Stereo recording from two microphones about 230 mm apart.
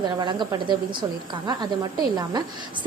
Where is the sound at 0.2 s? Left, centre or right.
Centre.